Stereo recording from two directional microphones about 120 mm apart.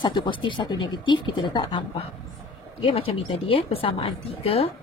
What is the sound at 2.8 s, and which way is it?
Speech, 50° left (ahead or behind).